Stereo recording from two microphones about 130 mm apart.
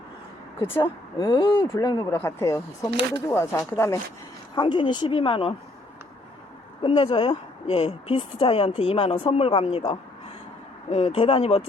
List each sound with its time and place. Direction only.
0.8 s speech: 40° left (ahead or behind); by 4.0 s 20° left (ahead or behind)
4.5 s speech: 35° left (ahead or behind)
6.8 s a woman's voice: 45° left (ahead or behind)